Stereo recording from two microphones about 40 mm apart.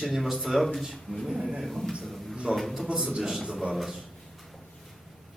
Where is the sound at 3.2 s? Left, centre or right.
Centre.